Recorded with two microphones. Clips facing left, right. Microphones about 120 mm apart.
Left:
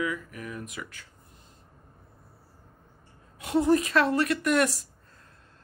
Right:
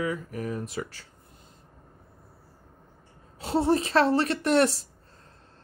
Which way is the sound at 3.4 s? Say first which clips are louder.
Left 1 dB; 30° right (ahead or behind).